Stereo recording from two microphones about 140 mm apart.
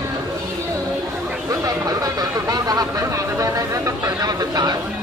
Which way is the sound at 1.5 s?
25° right (ahead or behind).